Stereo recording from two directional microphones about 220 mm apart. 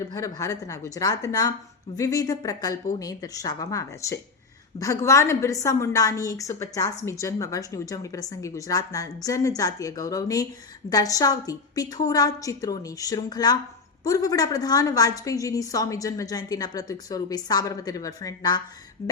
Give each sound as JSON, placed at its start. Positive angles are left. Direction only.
{"t": 0.1, "sound": "a woman's voice", "side_deg": 15}